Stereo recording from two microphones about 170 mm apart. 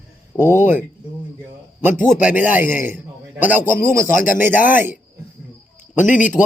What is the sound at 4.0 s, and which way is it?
Speech, 55° left (ahead or behind).